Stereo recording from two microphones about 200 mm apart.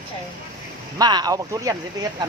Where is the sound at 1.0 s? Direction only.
20° right (ahead or behind).